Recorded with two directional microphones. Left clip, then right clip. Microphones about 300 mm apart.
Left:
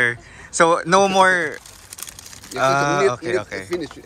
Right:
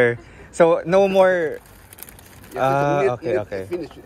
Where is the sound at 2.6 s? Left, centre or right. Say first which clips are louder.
Left 1 dB; centre.